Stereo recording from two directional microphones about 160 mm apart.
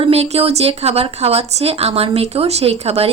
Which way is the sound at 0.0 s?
40° right (ahead or behind).